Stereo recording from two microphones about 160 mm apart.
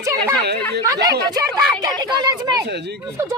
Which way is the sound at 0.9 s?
20° right (ahead or behind).